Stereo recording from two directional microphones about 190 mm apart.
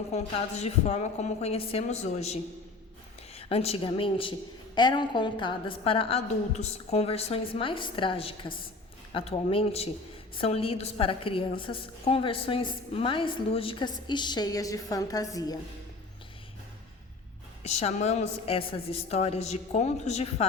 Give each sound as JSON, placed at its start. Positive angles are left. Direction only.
{"t": 0.1, "sound": "a woman's voice", "side_deg": 35}
{"t": 17.6, "sound": "a woman's voice", "side_deg": 35}